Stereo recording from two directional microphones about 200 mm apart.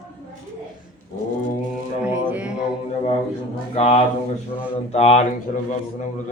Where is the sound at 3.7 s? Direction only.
30° left (ahead or behind).